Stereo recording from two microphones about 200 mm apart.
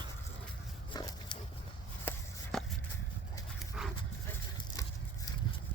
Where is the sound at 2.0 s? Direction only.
5° left (ahead or behind).